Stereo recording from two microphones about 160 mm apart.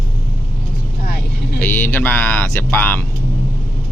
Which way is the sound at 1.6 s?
15° left (ahead or behind).